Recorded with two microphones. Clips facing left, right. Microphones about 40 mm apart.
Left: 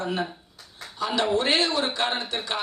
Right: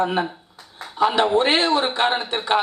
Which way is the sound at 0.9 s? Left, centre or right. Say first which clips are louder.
Right 7 dB; right.